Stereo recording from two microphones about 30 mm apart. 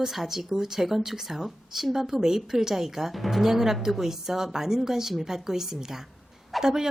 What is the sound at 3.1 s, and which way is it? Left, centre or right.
Speech, centre.